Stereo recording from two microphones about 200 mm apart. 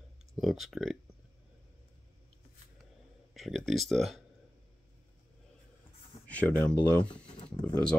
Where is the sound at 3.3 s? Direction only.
Centre (ahead or behind).